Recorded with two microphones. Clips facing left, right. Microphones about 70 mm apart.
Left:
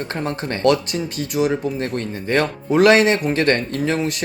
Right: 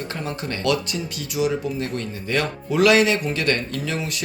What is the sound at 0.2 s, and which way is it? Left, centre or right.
Speech, left.